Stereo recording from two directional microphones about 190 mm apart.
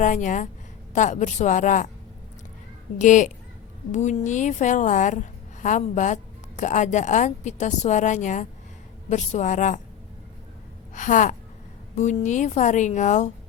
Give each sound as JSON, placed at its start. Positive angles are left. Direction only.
{"t": 0.0, "sound": "a woman's voice", "side_deg": 40}
{"t": 3.0, "sound": "a woman's voice", "side_deg": 40}
{"t": 10.9, "sound": "a woman's voice", "side_deg": 40}